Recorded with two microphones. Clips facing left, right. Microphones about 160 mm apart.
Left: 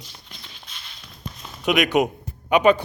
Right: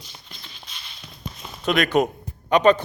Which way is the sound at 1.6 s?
15° left (ahead or behind).